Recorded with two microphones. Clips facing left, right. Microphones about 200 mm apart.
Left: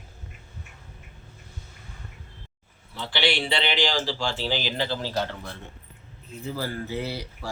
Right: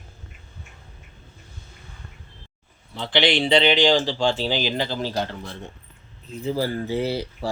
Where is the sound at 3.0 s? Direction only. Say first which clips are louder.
Right 5 dB; 20° right (ahead or behind).